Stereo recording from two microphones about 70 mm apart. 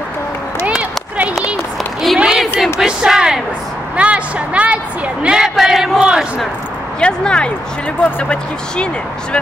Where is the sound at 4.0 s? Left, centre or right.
Centre.